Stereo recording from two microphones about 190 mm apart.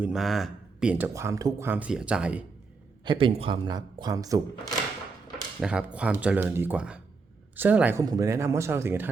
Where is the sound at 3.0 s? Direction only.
30° right (ahead or behind).